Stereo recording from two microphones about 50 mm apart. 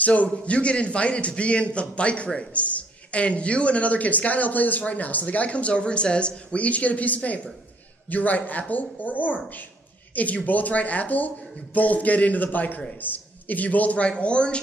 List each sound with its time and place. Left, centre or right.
0.0 s a man's voice: left